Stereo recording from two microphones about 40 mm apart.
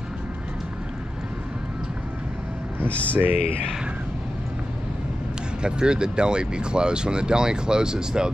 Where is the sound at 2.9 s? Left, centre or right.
Left.